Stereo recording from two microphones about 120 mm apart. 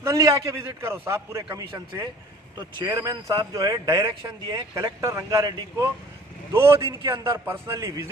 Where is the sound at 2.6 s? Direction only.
35° right (ahead or behind).